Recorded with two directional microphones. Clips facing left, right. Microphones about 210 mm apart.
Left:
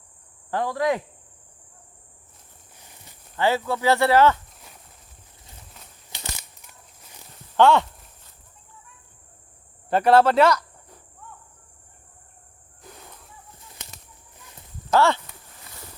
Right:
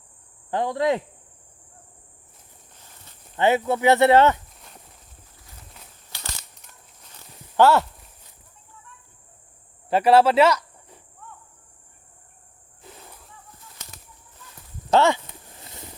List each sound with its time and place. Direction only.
0.5 s speech: 20° right (ahead or behind)
2.7 s walk: 15° left (ahead or behind)
3.3 s speech: 20° right (ahead or behind)
4.4 s walk: centre (ahead or behind)
6.1 s crumpling: 20° left (ahead or behind)
7.5 s speech: 5° right (ahead or behind)
9.9 s speech: 5° right (ahead or behind)
12.8 s snake: 5° right (ahead or behind)
14.8 s a sound: 20° right (ahead or behind)